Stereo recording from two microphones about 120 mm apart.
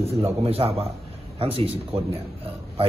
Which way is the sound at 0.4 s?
55° right (ahead or behind).